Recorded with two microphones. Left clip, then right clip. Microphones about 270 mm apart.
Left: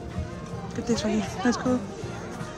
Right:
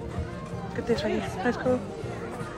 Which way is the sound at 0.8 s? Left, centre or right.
Centre.